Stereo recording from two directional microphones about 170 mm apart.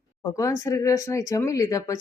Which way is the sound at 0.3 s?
20° left (ahead or behind).